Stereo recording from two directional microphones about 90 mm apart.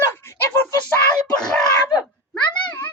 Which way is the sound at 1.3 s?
10° left (ahead or behind).